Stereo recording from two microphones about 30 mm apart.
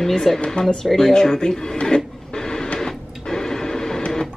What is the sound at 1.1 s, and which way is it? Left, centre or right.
Speech, left.